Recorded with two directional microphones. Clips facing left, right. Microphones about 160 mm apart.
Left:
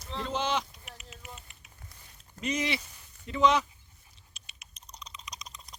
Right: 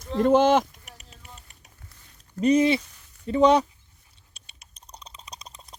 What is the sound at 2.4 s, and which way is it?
Speech, 30° right (ahead or behind).